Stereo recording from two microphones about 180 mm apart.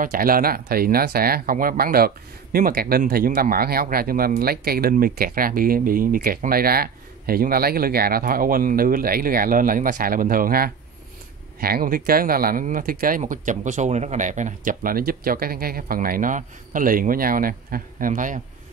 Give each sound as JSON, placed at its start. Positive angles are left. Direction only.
{"t": 0.0, "sound": "speech", "side_deg": -55}